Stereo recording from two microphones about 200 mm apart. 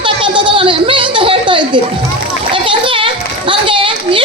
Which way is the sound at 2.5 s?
25° right (ahead or behind).